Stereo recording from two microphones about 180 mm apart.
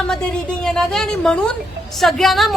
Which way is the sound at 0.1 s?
5° left (ahead or behind).